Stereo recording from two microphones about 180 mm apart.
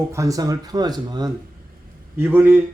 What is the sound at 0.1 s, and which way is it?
Speech, 20° right (ahead or behind).